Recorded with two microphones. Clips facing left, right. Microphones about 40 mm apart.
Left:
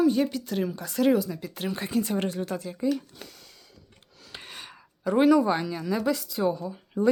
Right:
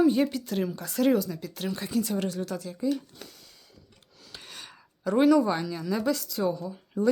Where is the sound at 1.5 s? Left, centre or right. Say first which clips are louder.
Left 1 dB; left.